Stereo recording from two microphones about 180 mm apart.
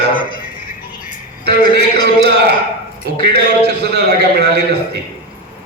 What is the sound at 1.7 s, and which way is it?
A man's voice, 65° right (ahead or behind).